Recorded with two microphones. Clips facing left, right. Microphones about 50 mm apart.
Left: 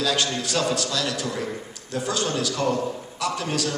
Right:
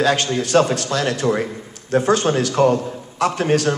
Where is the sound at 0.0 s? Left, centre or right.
Right.